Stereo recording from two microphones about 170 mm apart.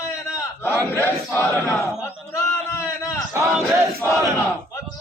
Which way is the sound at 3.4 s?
Centre (ahead or behind).